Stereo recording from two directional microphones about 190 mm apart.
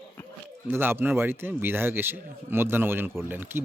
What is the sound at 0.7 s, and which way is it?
A man's voice, 10° right (ahead or behind).